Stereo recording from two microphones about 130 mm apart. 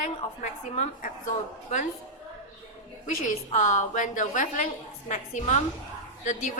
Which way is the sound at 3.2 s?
75° left (ahead or behind).